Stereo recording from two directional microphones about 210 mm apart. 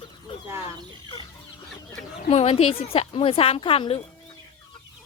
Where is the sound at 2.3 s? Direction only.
30° left (ahead or behind).